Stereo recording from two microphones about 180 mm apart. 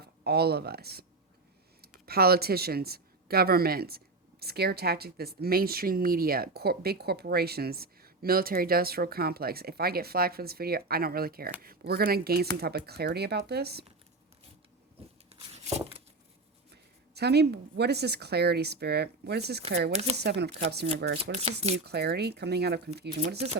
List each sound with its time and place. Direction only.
0.0 s speech: 65° right (ahead or behind)
15.3 s a sound: 35° right (ahead or behind)
17.2 s speech: 65° right (ahead or behind)
19.9 s speech: 35° right (ahead or behind)
20.1 s speech: 70° right (ahead or behind)
21.3 s speech: 35° right (ahead or behind)
21.8 s speech: 65° right (ahead or behind)